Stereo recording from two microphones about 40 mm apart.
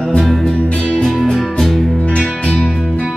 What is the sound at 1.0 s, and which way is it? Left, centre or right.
Music, centre.